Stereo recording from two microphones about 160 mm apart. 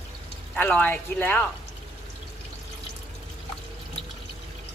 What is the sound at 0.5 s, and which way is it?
Speech, 10° left (ahead or behind).